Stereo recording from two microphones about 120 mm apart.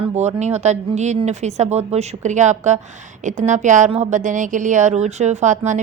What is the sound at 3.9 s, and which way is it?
Speech, 80° right.